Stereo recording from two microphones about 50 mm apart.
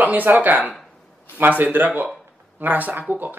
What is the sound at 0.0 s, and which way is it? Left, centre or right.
Speech, right.